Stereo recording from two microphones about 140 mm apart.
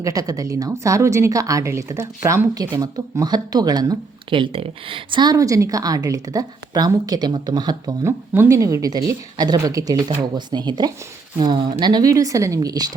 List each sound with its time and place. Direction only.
0.0 s a woman's voice: 25° right (ahead or behind)
8.3 s a woman's voice: 20° right (ahead or behind)